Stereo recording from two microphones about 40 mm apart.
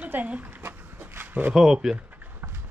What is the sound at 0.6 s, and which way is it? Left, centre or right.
Dog, right.